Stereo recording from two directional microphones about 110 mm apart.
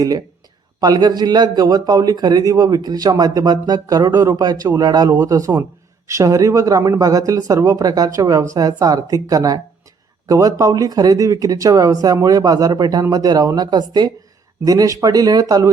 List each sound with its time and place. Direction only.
0.8 s a man's voice: 40° right (ahead or behind)